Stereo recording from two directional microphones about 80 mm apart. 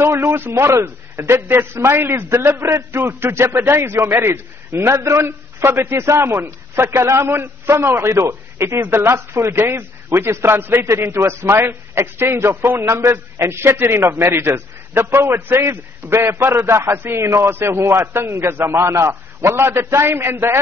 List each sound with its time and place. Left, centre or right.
0.0 s a man's voice: right